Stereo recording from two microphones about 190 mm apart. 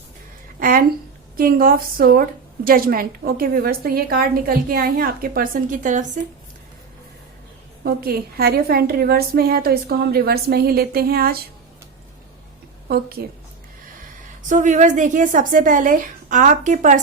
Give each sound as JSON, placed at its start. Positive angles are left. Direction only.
{"t": 0.6, "sound": "a sound", "side_deg": -45}
{"t": 1.4, "sound": "a woman's voice", "side_deg": -50}
{"t": 7.9, "sound": "a woman's voice", "side_deg": -55}
{"t": 12.9, "sound": "a woman's voice", "side_deg": -55}
{"t": 14.5, "sound": "a woman's voice", "side_deg": -40}